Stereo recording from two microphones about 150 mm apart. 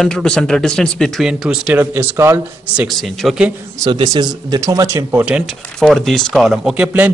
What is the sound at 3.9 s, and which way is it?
Speech, 30° right (ahead or behind).